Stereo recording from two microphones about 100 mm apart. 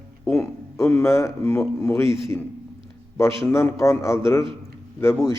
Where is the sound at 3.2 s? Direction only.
25° left (ahead or behind).